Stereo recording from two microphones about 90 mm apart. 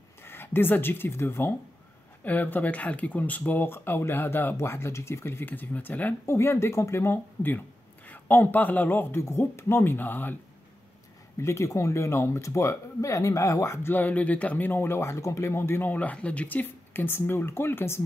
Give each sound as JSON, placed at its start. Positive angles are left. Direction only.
{"t": 0.2, "sound": "speech", "side_deg": 25}
{"t": 6.3, "sound": "speech", "side_deg": 30}
{"t": 11.3, "sound": "speech", "side_deg": 35}